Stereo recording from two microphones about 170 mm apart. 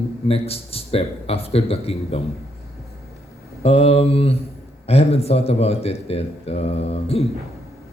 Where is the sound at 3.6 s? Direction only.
35° left (ahead or behind).